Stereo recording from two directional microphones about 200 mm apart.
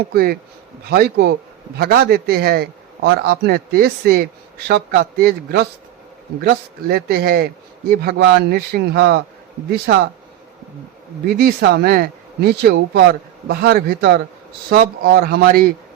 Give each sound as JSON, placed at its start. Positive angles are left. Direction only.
{"t": 0.0, "sound": "a man's voice", "side_deg": -50}
{"t": 11.3, "sound": "a man's voice", "side_deg": -50}